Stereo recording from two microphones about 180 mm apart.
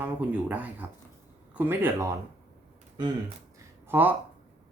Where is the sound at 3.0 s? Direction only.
25° right (ahead or behind).